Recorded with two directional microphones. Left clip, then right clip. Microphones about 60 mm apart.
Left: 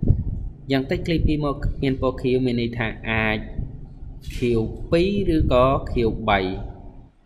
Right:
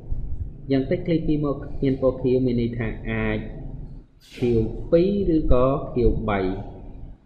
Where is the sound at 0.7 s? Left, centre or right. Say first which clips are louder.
Even; left.